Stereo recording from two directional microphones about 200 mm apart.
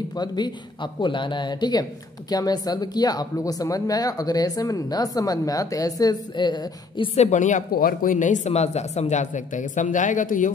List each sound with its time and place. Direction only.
0.1 s speech: 20° left (ahead or behind)
7.2 s speech: 35° left (ahead or behind)